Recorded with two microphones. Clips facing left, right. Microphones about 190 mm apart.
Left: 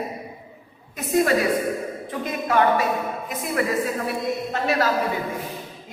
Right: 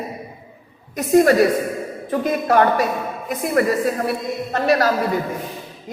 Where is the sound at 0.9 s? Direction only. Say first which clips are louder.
Right 6 dB; 40° right (ahead or behind).